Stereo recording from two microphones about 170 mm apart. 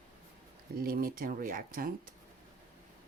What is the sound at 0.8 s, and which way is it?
Speech, 60° right (ahead or behind).